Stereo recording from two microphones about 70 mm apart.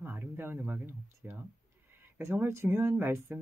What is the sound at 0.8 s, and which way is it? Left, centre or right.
Speech, right.